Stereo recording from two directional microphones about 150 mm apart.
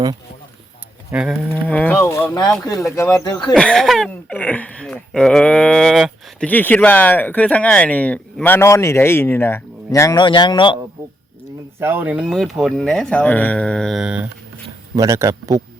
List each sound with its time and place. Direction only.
1.1 s speech: 5° right (ahead or behind)
1.5 s speech: 10° left (ahead or behind); by 3.5 s 25° left (ahead or behind)
3.5 s speech: 5° left (ahead or behind)
10.2 s speech: 30° left (ahead or behind)
11.8 s speech: 15° right (ahead or behind)
14.9 s speech: 20° right (ahead or behind)